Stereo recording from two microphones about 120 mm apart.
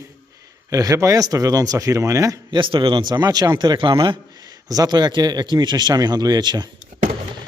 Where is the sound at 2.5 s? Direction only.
45° right (ahead or behind).